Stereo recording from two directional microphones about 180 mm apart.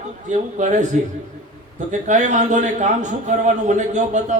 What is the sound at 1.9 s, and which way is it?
A man's voice, 40° right (ahead or behind).